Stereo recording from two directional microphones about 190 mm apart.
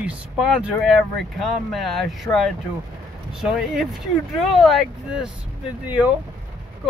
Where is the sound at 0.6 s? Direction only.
Centre (ahead or behind).